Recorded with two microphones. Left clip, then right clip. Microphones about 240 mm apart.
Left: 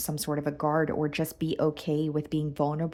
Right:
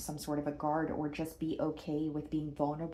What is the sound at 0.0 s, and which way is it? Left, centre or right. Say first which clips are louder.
Speech: left 6 dB; left.